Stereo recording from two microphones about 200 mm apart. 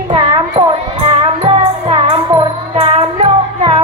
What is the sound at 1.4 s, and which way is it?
Music, 25° right (ahead or behind).